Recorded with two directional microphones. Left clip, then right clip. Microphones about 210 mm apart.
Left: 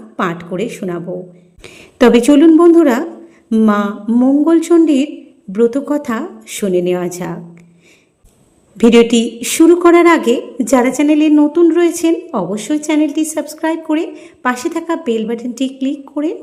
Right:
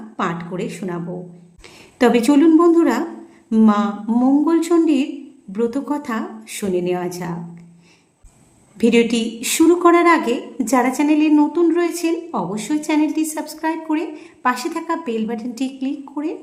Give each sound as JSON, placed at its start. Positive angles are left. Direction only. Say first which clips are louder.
{"t": 0.2, "sound": "a woman's voice", "louder": "left 5 dB", "side_deg": 20}
{"t": 8.8, "sound": "a woman's voice", "louder": "left 7 dB", "side_deg": 20}